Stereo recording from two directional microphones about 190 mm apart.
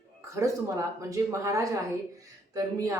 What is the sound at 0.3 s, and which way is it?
A woman's voice, 15° right (ahead or behind).